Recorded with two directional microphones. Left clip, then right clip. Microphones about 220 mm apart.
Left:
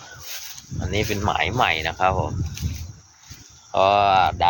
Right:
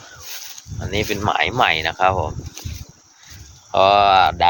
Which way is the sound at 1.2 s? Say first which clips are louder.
Right 4 dB; 25° right (ahead or behind).